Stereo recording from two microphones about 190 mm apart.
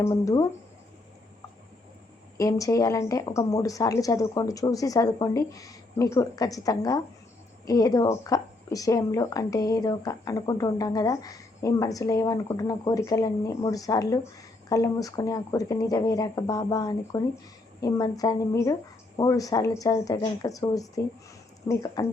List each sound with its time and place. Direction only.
0.0 s a woman's voice: 15° left (ahead or behind)
2.4 s a woman's voice: 15° left (ahead or behind)